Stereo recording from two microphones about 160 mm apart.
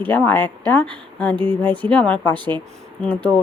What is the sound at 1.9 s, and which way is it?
Speech, 5° left (ahead or behind).